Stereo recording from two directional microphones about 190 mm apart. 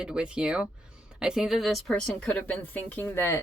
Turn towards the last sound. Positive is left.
turn(degrees=10)  # may be behind; listen again after turning